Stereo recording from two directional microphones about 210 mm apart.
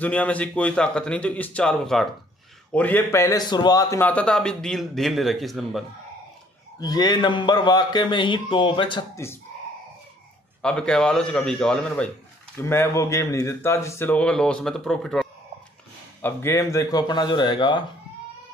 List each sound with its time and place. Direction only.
0.0 s a man's voice: 5° left (ahead or behind)
6.8 s a man's voice: 20° left (ahead or behind)
10.6 s a man's voice: 5° left (ahead or behind); by 17.8 s 20° left (ahead or behind)